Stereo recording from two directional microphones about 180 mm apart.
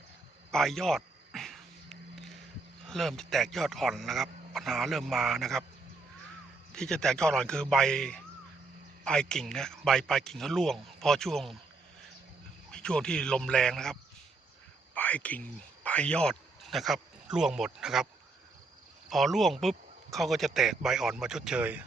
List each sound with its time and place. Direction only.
0.5 s a sound: 5° left (ahead or behind)
2.8 s speech: centre (ahead or behind)
6.7 s speech: 5° left (ahead or behind)
12.7 s speech: 5° left (ahead or behind)